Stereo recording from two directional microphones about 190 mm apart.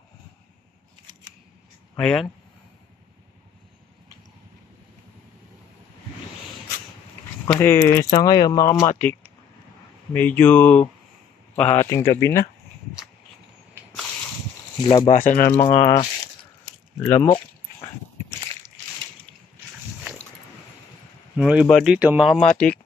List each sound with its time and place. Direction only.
2.0 s speech: 5° left (ahead or behind)
7.4 s speech: 10° left (ahead or behind)
10.1 s a man's voice: 10° left (ahead or behind)
14.8 s speech: 20° left (ahead or behind)
15.0 s speech: 45° left (ahead or behind)
15.6 s speech: 20° left (ahead or behind)
17.0 s speech: 15° left (ahead or behind)
21.4 s speech: 5° right (ahead or behind)
22.4 s speech: 40° left (ahead or behind)